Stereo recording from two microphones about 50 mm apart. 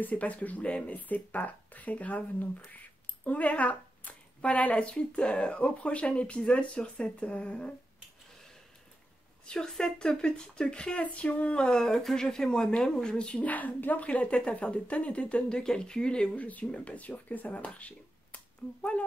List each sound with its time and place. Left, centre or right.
0.0 s speech: left
9.7 s speech: centre
16.4 s speech: left